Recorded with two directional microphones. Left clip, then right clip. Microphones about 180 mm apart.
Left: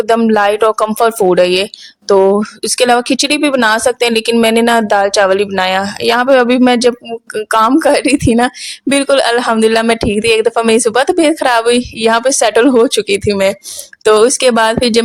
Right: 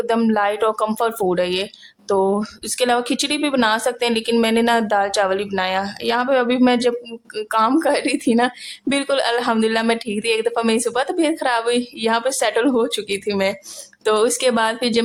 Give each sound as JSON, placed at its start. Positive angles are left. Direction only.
{"t": 0.3, "sound": "speech", "side_deg": 40}